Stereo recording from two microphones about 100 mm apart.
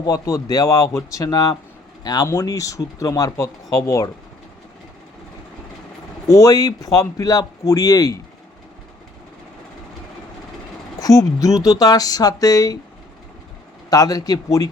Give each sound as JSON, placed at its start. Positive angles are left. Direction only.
{"t": 0.0, "sound": "speech", "side_deg": 35}
{"t": 6.2, "sound": "speech", "side_deg": 35}
{"t": 11.0, "sound": "speech", "side_deg": 35}
{"t": 13.9, "sound": "speech", "side_deg": 35}